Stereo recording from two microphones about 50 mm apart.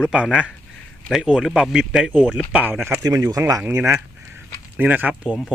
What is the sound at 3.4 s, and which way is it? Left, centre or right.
Speech, right.